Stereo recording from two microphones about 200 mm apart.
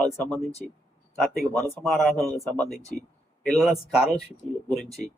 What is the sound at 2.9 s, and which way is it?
Speech, 40° left (ahead or behind).